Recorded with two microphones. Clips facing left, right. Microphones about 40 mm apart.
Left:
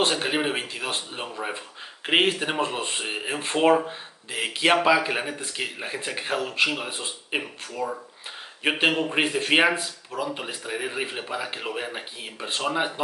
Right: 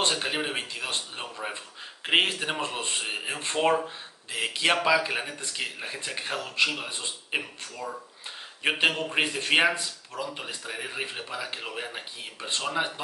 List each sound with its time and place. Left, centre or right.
0.0 s speech: centre